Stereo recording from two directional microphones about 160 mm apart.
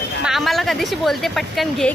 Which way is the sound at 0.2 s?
Centre (ahead or behind).